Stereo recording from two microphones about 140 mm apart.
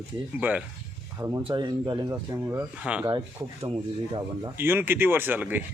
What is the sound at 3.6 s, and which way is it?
Speech, 40° right (ahead or behind).